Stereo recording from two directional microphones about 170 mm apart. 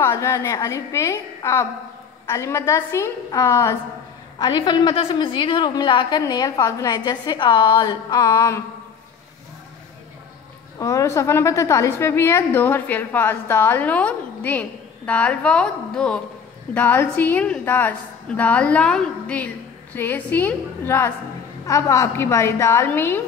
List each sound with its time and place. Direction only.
0.0 s a woman's voice: 20° left (ahead or behind)
10.8 s a woman's voice: 20° left (ahead or behind)